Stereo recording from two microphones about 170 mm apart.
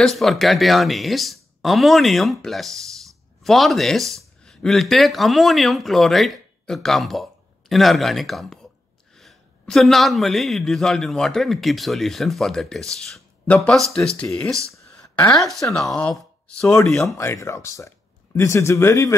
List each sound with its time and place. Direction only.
0.0 s a man's voice: centre (ahead or behind)
14.7 s a sound: 5° left (ahead or behind)
15.7 s a man's voice: 5° left (ahead or behind)
17.2 s speech: 15° left (ahead or behind)